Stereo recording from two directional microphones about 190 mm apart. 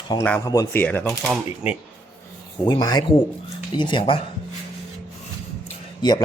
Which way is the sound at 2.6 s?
20° left (ahead or behind).